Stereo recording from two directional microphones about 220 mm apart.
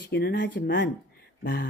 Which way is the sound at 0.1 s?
45° left (ahead or behind).